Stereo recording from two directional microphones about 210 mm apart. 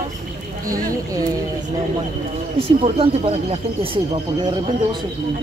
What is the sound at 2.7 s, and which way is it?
Speech, 25° right (ahead or behind).